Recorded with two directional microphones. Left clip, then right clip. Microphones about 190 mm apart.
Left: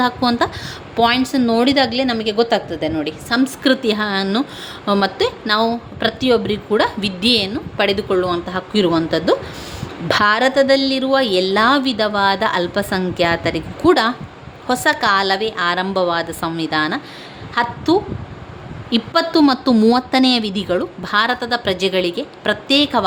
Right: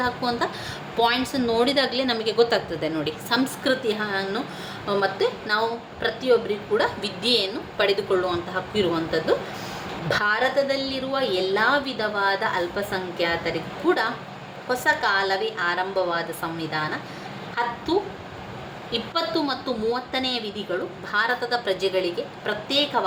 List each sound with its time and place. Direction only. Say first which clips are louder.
0.0 s a woman's voice: left 8 dB; 50° left (ahead or behind); by 3.4 s 30° left (ahead or behind)
3.6 s a woman's voice: left 7 dB; 50° left (ahead or behind)